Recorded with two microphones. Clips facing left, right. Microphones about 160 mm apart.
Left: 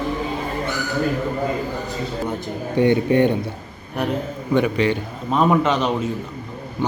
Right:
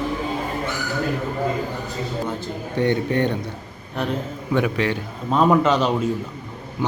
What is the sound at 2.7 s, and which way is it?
Speech, 15° left (ahead or behind).